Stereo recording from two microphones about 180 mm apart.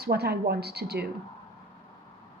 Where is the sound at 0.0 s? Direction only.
60° right (ahead or behind).